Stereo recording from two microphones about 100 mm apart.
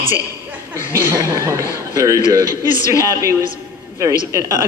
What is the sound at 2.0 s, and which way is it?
Speech, 35° right (ahead or behind).